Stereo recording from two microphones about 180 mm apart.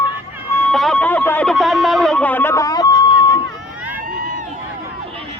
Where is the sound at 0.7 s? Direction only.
5° left (ahead or behind); by 3.4 s 20° left (ahead or behind).